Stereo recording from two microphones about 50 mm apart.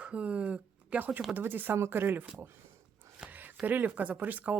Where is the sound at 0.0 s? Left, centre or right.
Right.